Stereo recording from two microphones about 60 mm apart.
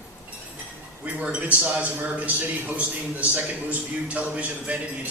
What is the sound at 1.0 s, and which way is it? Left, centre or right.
A man's voice, right.